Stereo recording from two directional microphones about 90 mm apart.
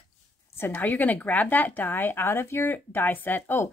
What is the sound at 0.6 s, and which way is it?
Speech, 20° left (ahead or behind).